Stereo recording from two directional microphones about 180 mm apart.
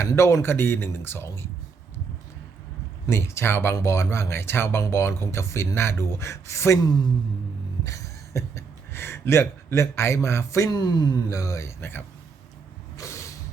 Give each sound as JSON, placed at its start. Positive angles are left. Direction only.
{"t": 0.0, "sound": "speech", "side_deg": 15}
{"t": 3.1, "sound": "speech", "side_deg": 15}
{"t": 13.0, "sound": "a sound", "side_deg": 15}